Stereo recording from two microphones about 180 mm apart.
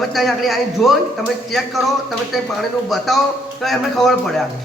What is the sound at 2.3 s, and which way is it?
A man's voice, centre (ahead or behind).